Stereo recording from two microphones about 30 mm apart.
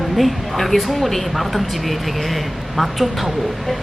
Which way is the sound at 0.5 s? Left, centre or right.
Centre.